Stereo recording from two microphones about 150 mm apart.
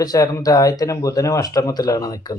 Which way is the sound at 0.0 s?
25° left (ahead or behind).